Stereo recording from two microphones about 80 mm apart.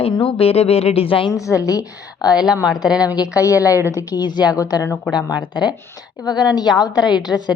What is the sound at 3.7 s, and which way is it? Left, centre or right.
Speech, right.